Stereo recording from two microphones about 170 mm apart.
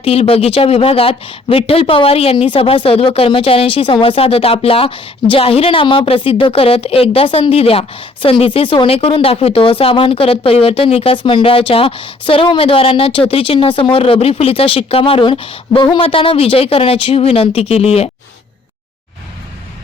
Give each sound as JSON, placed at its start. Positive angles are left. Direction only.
{"t": 0.0, "sound": "speech", "side_deg": 35}